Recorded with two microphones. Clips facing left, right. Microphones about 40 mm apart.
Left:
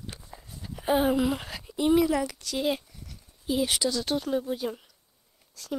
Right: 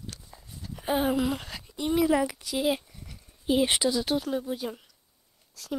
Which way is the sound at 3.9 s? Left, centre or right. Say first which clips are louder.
Even; centre.